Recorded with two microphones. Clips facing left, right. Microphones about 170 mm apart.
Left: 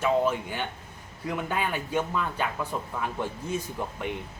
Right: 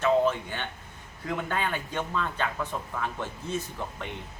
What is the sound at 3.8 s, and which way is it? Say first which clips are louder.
Speech: left 3 dB; 15° left (ahead or behind).